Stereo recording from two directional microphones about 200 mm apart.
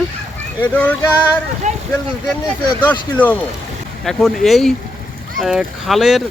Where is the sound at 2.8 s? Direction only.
10° left (ahead or behind).